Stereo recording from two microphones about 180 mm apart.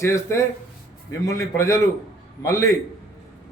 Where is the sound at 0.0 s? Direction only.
15° left (ahead or behind).